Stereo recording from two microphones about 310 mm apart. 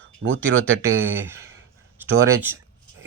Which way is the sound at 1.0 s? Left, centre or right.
Centre.